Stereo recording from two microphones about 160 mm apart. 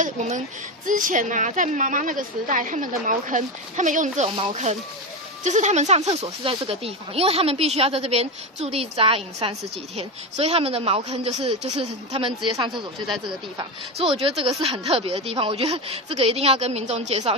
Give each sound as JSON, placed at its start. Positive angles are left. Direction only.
{"t": 0.0, "sound": "a woman's voice", "side_deg": -50}
{"t": 13.9, "sound": "speech", "side_deg": -35}